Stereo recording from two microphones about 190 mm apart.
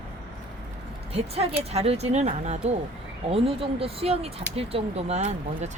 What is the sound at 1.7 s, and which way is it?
Speech, 30° right (ahead or behind).